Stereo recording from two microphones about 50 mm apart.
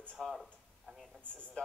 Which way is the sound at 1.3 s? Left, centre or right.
Left.